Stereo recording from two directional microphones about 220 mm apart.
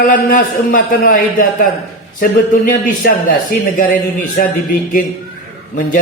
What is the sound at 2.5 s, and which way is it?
A man's voice, 40° left (ahead or behind).